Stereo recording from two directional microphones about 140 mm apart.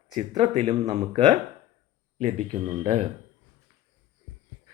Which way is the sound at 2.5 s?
35° right (ahead or behind).